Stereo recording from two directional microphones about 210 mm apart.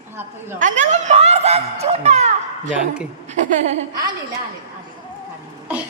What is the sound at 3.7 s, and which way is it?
Speech, 45° right (ahead or behind).